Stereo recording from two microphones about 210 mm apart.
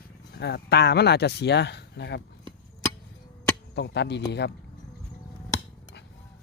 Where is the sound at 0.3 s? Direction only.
50° left (ahead or behind).